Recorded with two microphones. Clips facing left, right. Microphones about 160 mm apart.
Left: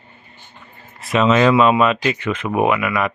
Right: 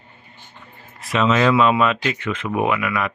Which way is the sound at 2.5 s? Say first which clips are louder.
Left 4 dB; 60° left (ahead or behind).